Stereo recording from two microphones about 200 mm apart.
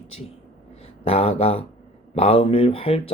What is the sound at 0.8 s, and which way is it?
Speech, 30° left (ahead or behind).